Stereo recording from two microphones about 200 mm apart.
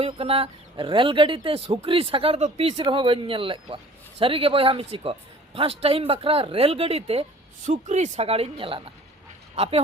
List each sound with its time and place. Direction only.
0.0 s speech: 30° right (ahead or behind)